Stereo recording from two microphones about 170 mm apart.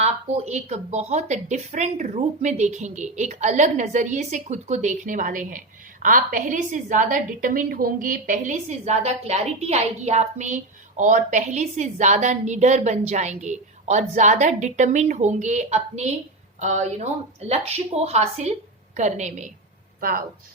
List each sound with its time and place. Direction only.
0.0 s a woman's voice: 40° right (ahead or behind)
20.0 s speech: 55° right (ahead or behind)